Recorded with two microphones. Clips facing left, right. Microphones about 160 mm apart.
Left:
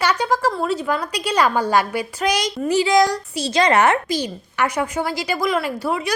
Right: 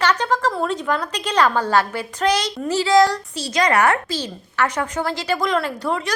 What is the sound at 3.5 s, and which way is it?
A woman's voice, 25° left (ahead or behind).